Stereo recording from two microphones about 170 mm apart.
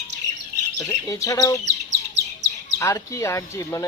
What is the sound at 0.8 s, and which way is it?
Speech, 20° left (ahead or behind).